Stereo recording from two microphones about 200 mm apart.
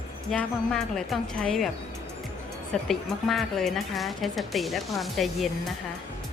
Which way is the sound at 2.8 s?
Centre (ahead or behind).